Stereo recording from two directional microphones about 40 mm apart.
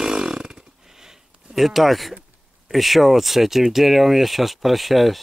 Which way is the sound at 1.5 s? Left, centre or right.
Centre.